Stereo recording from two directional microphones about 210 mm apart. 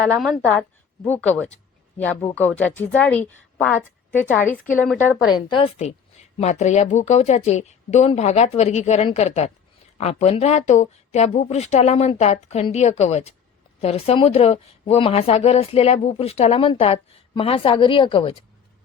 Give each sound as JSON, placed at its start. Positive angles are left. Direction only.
{"t": 0.0, "sound": "a woman's voice", "side_deg": 0}
{"t": 5.0, "sound": "a woman's voice", "side_deg": 20}